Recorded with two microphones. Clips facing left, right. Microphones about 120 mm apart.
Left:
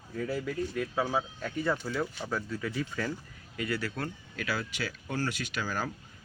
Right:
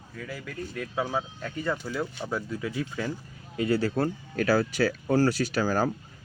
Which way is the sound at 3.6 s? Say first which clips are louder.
Right 8 dB; 30° right (ahead or behind).